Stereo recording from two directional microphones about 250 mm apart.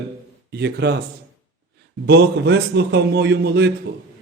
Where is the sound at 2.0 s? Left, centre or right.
Right.